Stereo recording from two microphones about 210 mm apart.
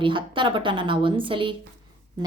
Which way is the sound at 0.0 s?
25° right (ahead or behind).